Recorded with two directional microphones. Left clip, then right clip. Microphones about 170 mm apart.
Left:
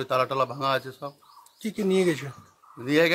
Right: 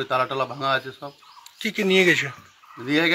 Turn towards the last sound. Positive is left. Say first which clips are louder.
# even
turn(degrees=35)  # may be behind; listen again after turning